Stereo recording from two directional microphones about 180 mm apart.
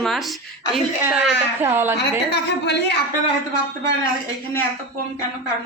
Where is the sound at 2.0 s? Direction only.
70° left (ahead or behind).